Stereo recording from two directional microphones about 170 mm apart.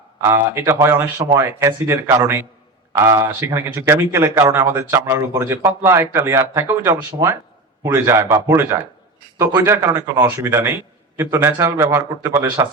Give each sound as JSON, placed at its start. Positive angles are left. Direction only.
{"t": 0.3, "sound": "speech", "side_deg": -15}